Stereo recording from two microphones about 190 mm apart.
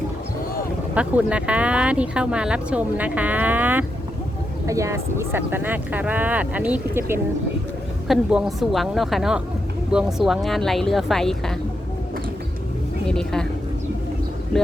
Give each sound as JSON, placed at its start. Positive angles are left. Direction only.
{"t": 0.9, "sound": "speech", "side_deg": -5}
{"t": 13.1, "sound": "speech", "side_deg": 5}